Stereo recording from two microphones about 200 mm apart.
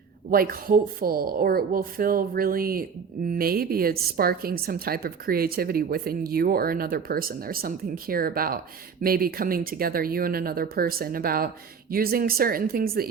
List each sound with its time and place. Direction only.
0.3 s a woman's voice: 45° right (ahead or behind)